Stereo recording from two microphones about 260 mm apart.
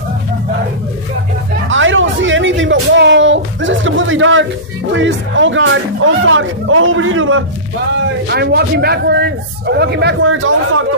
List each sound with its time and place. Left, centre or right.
1.7 s a sound: right
4.9 s a man's voice: right
8.3 s a man's voice: right